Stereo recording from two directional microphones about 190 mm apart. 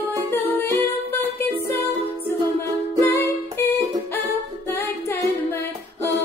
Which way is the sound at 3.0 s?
15° left (ahead or behind).